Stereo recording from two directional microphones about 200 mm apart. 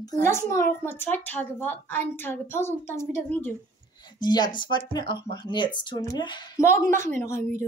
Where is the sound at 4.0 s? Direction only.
20° left (ahead or behind).